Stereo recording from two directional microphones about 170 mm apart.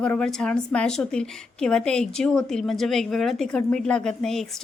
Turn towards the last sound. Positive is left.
turn(degrees=5)  # may be behind; listen again after turning